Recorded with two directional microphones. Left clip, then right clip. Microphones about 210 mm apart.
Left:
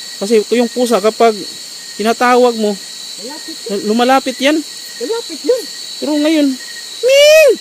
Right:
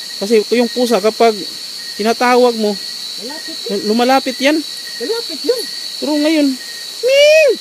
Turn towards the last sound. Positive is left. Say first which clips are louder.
# left 2 dB
turn(degrees=25)  # may be behind; listen again after turning